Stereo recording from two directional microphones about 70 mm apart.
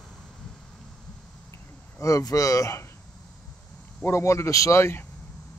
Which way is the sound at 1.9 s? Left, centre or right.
Left.